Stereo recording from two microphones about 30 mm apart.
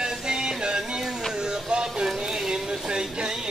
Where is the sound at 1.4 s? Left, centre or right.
Right.